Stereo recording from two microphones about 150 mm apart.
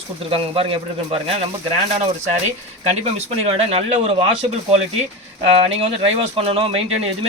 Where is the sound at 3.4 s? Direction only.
40° right (ahead or behind).